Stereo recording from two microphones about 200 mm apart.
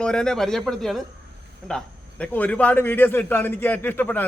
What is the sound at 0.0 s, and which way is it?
A man's voice, 5° left (ahead or behind).